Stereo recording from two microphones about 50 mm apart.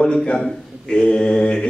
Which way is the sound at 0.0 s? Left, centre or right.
Centre.